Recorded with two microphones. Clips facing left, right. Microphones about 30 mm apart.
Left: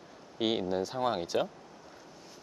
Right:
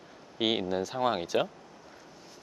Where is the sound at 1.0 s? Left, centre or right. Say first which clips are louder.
Right 4 dB; right.